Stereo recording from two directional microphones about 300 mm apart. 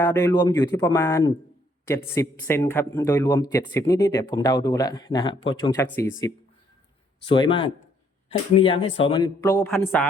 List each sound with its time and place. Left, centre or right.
0.0 s a man's voice: centre
7.3 s a man's voice: centre